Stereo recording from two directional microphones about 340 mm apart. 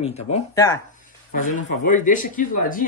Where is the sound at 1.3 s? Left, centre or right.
Left.